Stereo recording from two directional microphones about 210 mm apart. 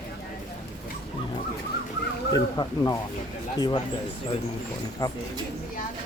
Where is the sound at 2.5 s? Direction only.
15° left (ahead or behind).